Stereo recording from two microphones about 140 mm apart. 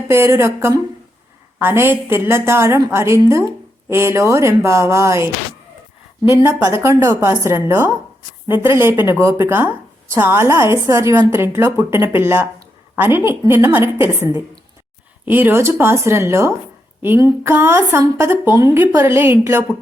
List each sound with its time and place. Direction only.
0.1 s a woman's voice: 20° right (ahead or behind)